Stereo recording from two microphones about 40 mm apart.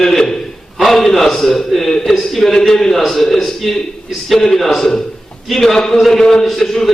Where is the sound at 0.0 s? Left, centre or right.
Centre.